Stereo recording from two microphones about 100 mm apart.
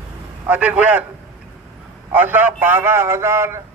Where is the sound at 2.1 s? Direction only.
20° right (ahead or behind).